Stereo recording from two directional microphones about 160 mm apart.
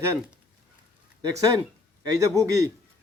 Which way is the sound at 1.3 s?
20° right (ahead or behind).